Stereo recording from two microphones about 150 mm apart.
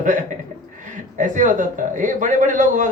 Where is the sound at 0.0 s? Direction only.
55° right (ahead or behind).